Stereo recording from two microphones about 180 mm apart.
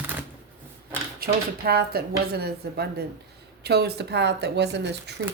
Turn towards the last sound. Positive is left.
turn(degrees=-70)  # may be behind; listen again after turning